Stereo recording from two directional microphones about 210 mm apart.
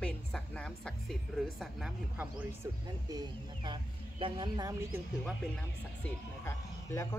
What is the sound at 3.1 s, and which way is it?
Speech, 20° right (ahead or behind).